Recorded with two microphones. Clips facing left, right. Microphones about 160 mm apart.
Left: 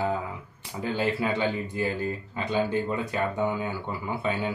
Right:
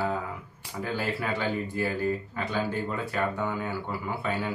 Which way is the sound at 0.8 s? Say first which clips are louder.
Left 4 dB; 20° left (ahead or behind).